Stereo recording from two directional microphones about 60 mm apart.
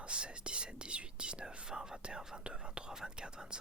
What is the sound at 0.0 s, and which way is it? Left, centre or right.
Speech, centre.